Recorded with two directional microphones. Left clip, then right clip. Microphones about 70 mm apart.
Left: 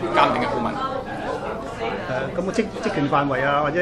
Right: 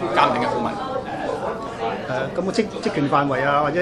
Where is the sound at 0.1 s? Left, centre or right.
Centre.